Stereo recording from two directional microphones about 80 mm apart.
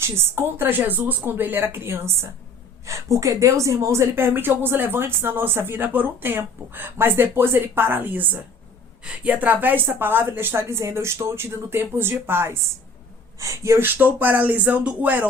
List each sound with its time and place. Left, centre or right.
0.0 s a woman's voice: right